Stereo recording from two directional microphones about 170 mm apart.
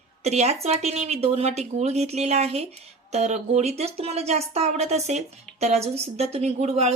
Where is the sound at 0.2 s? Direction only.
40° right (ahead or behind).